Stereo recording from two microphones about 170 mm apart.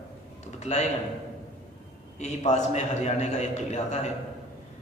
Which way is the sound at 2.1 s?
40° left (ahead or behind).